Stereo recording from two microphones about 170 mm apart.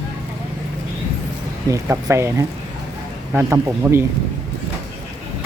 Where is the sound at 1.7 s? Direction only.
15° right (ahead or behind).